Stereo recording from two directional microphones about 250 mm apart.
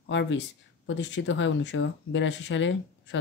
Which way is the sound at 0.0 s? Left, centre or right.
Left.